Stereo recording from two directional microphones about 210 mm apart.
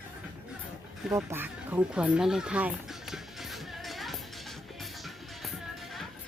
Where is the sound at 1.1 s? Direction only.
10° right (ahead or behind).